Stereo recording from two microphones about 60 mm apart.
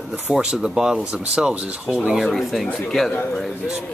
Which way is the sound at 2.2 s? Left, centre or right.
Centre.